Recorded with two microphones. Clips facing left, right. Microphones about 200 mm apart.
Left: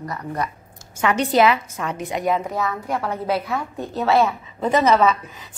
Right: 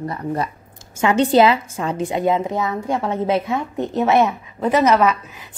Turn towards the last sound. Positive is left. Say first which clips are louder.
# right 1 dB
turn(degrees=-10)  # may be behind; listen again after turning